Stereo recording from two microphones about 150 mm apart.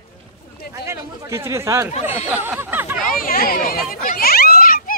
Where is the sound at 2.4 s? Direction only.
15° right (ahead or behind).